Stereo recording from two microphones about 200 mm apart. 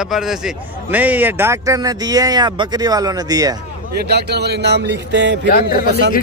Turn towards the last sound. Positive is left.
turn(degrees=45)  # may be behind; listen again after turning